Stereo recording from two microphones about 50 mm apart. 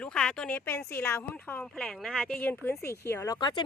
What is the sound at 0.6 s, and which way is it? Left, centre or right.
Speech, left.